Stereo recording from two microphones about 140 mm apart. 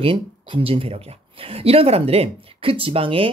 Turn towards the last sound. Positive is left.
turn(degrees=-40)  # may be behind; listen again after turning